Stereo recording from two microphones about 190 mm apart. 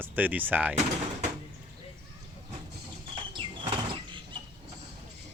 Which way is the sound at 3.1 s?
25° right (ahead or behind).